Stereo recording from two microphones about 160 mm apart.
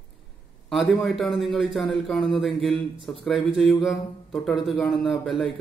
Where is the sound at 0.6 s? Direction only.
Centre (ahead or behind).